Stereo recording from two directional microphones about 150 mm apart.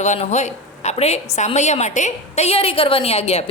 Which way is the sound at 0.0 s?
50° left (ahead or behind).